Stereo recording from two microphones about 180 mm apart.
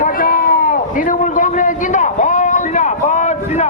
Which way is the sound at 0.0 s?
50° left (ahead or behind).